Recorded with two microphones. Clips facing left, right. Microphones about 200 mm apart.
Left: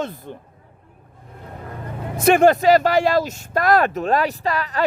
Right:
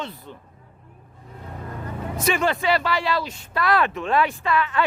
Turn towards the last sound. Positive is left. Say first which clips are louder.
# even
turn(degrees=40)  # may be behind; listen again after turning